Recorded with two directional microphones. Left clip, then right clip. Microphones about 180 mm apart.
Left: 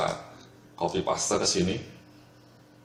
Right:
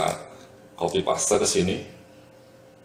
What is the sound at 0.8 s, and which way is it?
Speech, 40° left (ahead or behind).